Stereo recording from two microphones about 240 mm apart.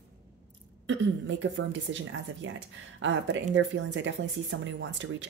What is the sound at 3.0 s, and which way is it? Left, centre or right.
Speech, right.